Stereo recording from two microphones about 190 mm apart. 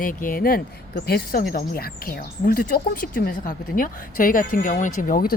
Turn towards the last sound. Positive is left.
turn(degrees=50)  # may be behind; listen again after turning